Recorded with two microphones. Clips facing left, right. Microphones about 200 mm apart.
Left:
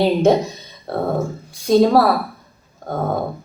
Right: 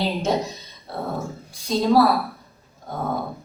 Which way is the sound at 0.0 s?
55° left (ahead or behind).